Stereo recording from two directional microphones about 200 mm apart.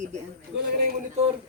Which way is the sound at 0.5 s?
65° right (ahead or behind).